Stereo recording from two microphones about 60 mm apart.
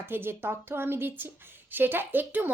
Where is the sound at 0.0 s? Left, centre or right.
Right.